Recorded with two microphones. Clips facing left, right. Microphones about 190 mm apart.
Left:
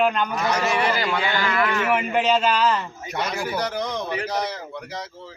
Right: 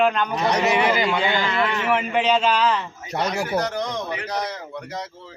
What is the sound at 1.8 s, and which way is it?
Speech, 5° left (ahead or behind).